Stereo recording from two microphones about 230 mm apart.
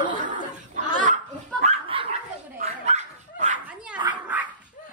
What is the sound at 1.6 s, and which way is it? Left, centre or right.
Dog, right.